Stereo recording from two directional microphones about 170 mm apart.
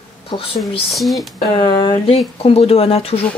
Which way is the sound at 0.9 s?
Centre (ahead or behind).